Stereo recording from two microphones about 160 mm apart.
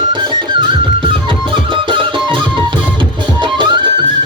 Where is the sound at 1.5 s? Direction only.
30° right (ahead or behind).